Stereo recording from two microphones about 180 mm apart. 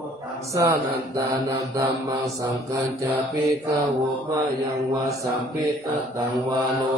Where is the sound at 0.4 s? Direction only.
15° right (ahead or behind).